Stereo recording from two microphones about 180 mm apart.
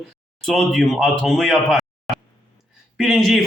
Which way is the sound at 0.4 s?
Centre (ahead or behind).